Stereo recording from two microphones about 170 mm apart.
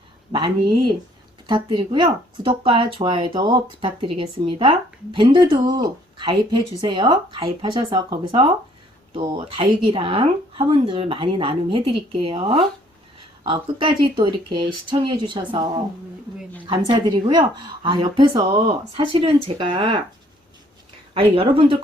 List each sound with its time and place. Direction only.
0.3 s speech: 30° right (ahead or behind)
21.1 s speech: 35° right (ahead or behind)